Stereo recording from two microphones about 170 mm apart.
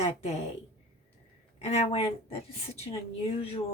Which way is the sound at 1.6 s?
40° left (ahead or behind).